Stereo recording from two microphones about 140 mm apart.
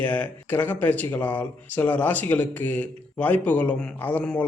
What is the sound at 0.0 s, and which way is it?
Speech, 10° left (ahead or behind).